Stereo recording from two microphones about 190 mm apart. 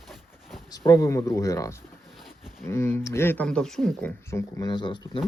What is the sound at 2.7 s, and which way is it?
Speech, 15° left (ahead or behind).